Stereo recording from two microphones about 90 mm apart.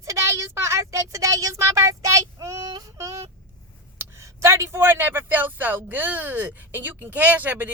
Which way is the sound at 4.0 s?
30° right (ahead or behind).